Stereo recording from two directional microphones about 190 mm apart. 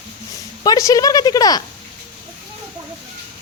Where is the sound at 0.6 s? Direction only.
20° left (ahead or behind).